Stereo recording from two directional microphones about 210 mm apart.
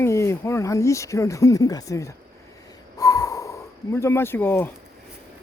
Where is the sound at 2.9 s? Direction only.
15° left (ahead or behind).